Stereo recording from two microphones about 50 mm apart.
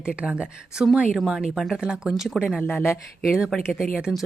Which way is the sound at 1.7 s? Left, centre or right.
Centre.